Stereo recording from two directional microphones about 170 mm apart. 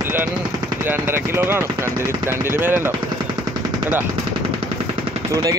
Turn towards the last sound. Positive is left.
turn(degrees=-20)  # may be behind; listen again after turning